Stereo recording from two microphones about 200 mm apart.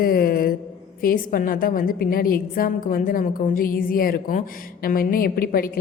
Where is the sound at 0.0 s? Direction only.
45° left (ahead or behind).